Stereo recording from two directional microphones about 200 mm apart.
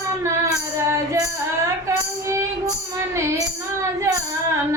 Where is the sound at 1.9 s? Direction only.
15° right (ahead or behind).